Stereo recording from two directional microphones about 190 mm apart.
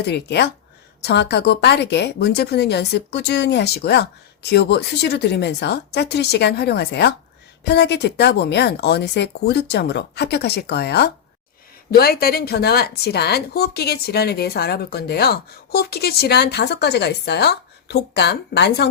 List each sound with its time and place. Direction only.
0.0 s a woman's voice: 60° left (ahead or behind)